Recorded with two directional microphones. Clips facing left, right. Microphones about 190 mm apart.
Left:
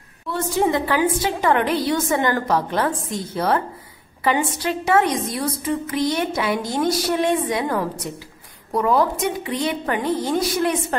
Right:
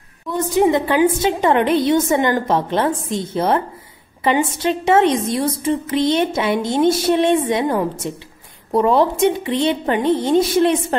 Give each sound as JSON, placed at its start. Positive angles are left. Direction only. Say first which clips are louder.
{"t": 0.3, "sound": "a woman's voice", "louder": "right 5 dB", "side_deg": -15}